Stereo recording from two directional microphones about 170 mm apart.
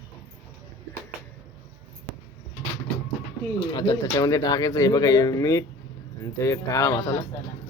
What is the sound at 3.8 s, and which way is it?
Speech, 20° left (ahead or behind).